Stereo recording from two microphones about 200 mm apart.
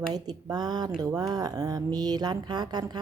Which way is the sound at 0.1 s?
20° right (ahead or behind).